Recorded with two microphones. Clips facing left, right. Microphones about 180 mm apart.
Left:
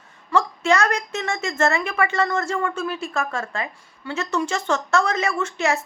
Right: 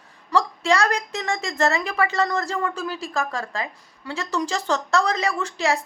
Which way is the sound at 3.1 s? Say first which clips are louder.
Even; 15° right (ahead or behind).